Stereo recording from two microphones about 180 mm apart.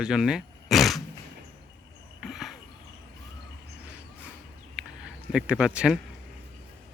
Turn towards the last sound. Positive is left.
turn(degrees=-5)  # may be behind; listen again after turning